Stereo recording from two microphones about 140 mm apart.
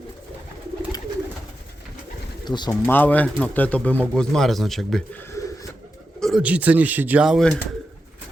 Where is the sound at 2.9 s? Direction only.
10° left (ahead or behind).